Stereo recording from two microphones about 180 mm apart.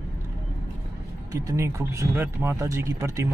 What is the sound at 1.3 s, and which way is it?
Speech, 15° right (ahead or behind).